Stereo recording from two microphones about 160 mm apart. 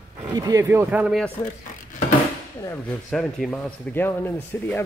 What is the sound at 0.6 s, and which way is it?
Speech, 10° right (ahead or behind).